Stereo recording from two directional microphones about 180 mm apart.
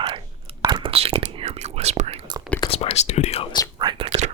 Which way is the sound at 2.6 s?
35° left (ahead or behind).